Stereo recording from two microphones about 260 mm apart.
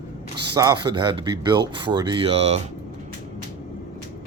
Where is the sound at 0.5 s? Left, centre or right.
Centre.